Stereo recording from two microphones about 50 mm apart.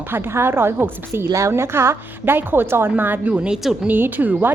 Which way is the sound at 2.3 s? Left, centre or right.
Right.